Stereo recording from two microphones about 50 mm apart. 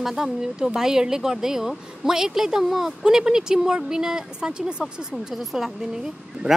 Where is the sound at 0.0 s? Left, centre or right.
Centre.